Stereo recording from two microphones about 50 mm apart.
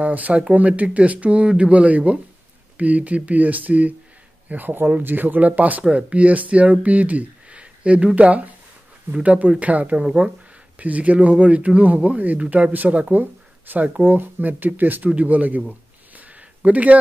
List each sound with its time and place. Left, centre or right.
0.0 s speech: right
10.0 s speech: centre
10.8 s speech: right
16.2 s a sound: right